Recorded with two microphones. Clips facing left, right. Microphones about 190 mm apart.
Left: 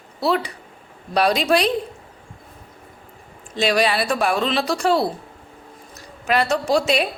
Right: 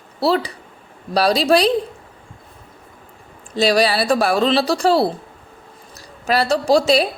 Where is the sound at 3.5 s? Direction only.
35° right (ahead or behind).